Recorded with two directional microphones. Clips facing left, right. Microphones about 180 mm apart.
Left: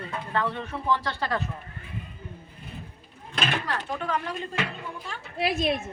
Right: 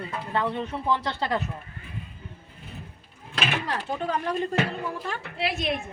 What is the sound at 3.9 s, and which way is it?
Speech, 35° right (ahead or behind).